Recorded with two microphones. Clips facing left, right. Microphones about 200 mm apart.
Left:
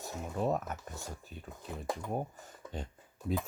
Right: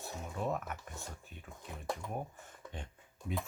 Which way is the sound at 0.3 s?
40° left (ahead or behind).